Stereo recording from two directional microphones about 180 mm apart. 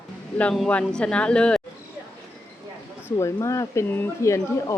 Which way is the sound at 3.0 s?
15° left (ahead or behind).